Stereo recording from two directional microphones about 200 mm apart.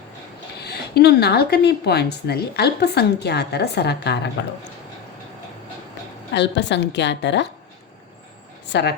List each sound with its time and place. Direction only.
0.6 s a woman's voice: 55° left (ahead or behind)
6.3 s a woman's voice: 60° left (ahead or behind)
8.7 s a woman's voice: 55° left (ahead or behind)